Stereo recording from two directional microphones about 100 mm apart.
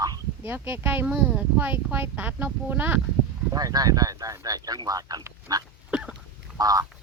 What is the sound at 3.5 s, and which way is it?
Speech, 40° right (ahead or behind).